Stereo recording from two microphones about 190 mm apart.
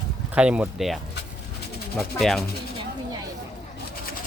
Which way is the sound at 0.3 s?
5° right (ahead or behind).